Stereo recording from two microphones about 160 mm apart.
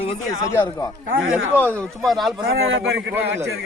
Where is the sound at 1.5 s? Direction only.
10° left (ahead or behind).